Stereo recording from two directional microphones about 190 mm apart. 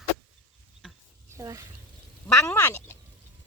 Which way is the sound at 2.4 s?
10° left (ahead or behind).